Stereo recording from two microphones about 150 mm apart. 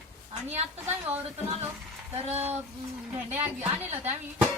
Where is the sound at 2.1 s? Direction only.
45° right (ahead or behind).